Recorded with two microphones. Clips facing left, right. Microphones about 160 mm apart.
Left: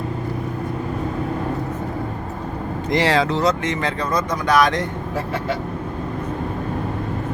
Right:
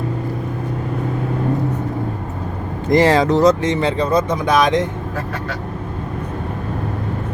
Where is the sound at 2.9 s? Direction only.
45° right (ahead or behind); by 4.9 s 20° right (ahead or behind).